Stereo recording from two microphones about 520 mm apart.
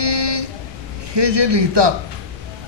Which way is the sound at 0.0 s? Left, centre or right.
Right.